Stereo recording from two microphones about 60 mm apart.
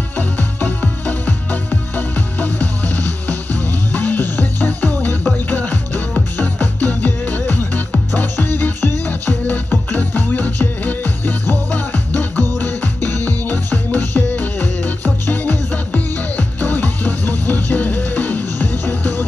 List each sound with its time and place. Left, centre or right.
0.2 s music: left